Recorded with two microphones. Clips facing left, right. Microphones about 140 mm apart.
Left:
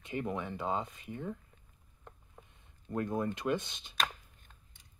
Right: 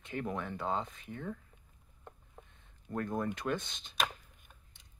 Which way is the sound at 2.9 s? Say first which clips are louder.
Left 1 dB; 10° left (ahead or behind).